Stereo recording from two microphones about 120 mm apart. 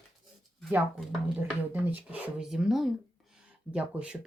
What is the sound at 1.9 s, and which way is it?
Speech, 15° right (ahead or behind).